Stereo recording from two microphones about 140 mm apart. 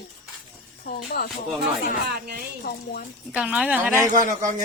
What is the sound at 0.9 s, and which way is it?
Speech, 90° left.